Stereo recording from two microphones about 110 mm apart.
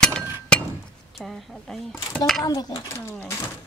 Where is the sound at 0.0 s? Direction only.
5° left (ahead or behind).